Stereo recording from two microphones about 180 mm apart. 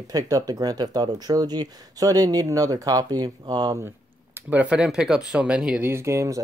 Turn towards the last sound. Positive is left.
turn(degrees=-15)  # may be behind; listen again after turning